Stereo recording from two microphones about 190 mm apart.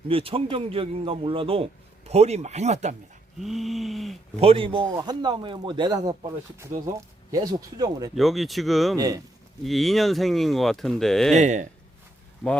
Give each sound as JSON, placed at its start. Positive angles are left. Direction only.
{"t": 0.1, "sound": "a man's voice", "side_deg": -30}
{"t": 3.4, "sound": "speech", "side_deg": 0}
{"t": 4.4, "sound": "a man's voice", "side_deg": -30}
{"t": 7.3, "sound": "a man's voice", "side_deg": -20}
{"t": 8.1, "sound": "speech", "side_deg": 0}
{"t": 9.0, "sound": "a man's voice", "side_deg": -20}
{"t": 9.6, "sound": "speech", "side_deg": 0}
{"t": 11.3, "sound": "speech", "side_deg": -40}